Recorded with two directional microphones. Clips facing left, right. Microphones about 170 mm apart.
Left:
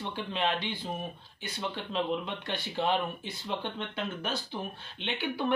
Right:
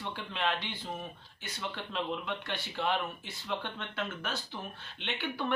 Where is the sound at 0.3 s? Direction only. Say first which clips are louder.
Left 3 dB; 15° left (ahead or behind).